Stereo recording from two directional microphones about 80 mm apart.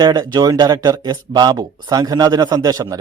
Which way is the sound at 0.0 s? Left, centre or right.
Right.